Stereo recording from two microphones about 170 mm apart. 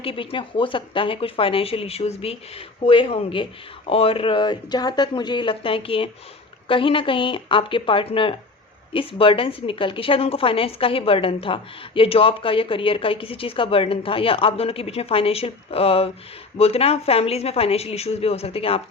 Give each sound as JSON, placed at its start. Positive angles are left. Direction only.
{"t": 0.0, "sound": "a woman's voice", "side_deg": 30}